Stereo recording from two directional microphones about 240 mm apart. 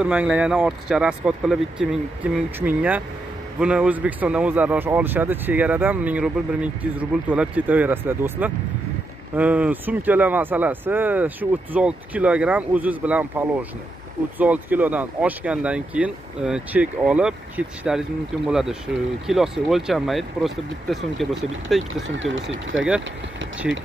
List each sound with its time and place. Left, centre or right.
0.0 s a man's voice: centre
22.0 s speech: right
23.6 s speech: centre